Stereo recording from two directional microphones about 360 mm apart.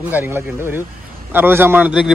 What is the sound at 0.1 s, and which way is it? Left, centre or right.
A man's voice, centre.